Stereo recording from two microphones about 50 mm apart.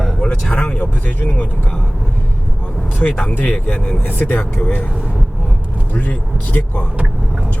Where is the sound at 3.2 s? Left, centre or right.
Left.